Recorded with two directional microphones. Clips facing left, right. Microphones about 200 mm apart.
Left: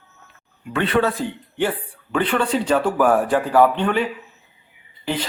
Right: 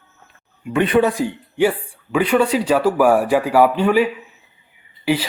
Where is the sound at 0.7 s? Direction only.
15° right (ahead or behind).